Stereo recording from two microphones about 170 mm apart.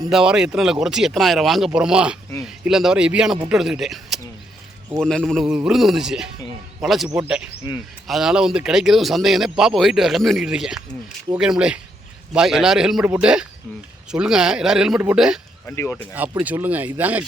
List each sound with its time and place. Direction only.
0.1 s speech: 5° right (ahead or behind)
15.6 s speech: 15° left (ahead or behind)
16.4 s speech: 10° right (ahead or behind)